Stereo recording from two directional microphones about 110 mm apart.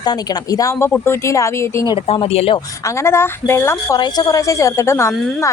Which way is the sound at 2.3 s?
65° left (ahead or behind).